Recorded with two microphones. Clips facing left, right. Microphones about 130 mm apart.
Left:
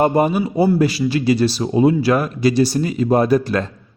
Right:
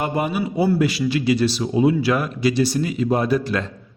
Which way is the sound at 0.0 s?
40° left (ahead or behind).